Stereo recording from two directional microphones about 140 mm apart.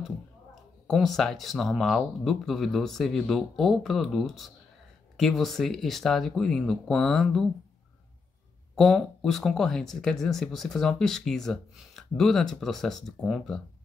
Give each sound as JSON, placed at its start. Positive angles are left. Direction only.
{"t": 0.8, "sound": "speech", "side_deg": 0}
{"t": 8.7, "sound": "speech", "side_deg": 0}